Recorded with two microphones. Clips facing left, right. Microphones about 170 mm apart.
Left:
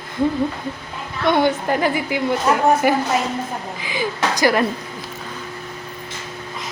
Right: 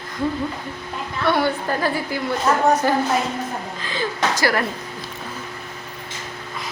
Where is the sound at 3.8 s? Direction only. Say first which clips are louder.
Left 1 dB; 10° left (ahead or behind).